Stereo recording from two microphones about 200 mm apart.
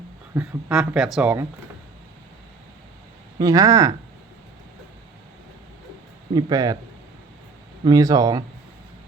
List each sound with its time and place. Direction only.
0.3 s speech: 5° right (ahead or behind)
3.3 s speech: 15° right (ahead or behind)
6.3 s speech: 20° right (ahead or behind)
7.9 s speech: 20° right (ahead or behind)